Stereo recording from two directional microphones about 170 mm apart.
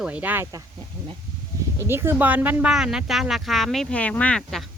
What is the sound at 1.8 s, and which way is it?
Speech, 15° right (ahead or behind).